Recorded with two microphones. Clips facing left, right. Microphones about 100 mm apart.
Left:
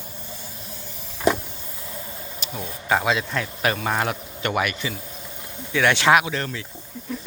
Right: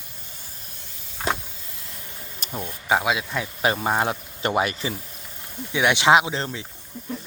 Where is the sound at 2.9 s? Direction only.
10° right (ahead or behind).